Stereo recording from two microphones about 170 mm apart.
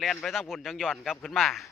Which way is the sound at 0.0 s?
Centre (ahead or behind).